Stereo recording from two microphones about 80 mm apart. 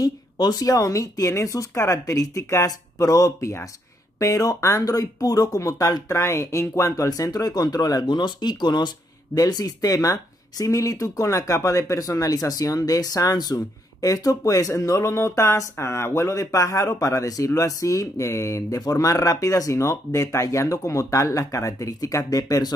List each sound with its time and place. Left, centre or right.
0.0 s speech: left